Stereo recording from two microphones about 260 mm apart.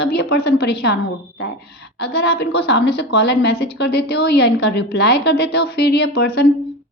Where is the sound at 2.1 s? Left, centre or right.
Left.